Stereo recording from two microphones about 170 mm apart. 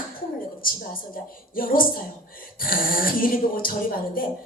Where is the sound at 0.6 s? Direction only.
55° left (ahead or behind).